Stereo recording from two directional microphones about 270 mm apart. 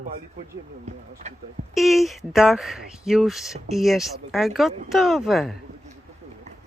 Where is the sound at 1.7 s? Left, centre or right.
Centre.